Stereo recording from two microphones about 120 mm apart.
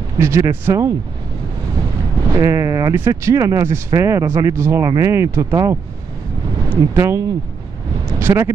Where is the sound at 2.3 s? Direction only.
25° right (ahead or behind).